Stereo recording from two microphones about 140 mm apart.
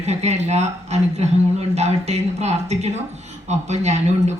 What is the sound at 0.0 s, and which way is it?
Speech, 50° right (ahead or behind).